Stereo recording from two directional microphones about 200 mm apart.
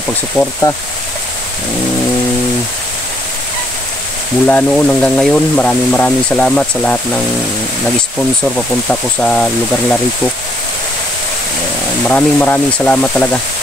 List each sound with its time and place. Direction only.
0.4 s speech: 15° left (ahead or behind)
4.5 s speech: 5° left (ahead or behind)
8.5 s speech: 5° left (ahead or behind)
12.1 s speech: 5° left (ahead or behind)